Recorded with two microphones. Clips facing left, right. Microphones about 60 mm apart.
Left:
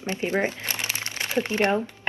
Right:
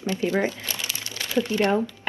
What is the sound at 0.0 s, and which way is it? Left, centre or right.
Speech, left.